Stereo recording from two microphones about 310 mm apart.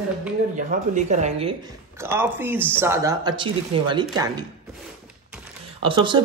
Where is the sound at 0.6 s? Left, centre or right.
Right.